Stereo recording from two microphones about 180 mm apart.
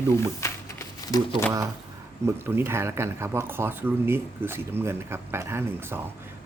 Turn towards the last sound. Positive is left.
turn(degrees=-15)  # may be behind; listen again after turning